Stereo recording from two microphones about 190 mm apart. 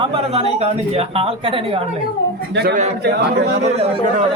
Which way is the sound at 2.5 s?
60° right (ahead or behind).